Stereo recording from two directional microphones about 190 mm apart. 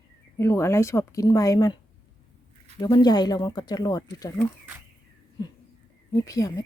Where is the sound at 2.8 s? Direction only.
20° left (ahead or behind).